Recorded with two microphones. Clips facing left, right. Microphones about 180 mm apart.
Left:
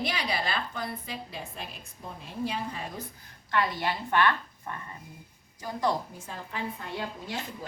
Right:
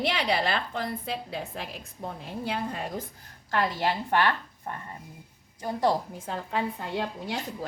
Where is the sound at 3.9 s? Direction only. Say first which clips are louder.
Right 1 dB; 35° right (ahead or behind).